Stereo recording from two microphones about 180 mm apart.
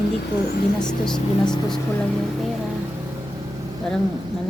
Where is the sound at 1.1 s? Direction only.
25° left (ahead or behind).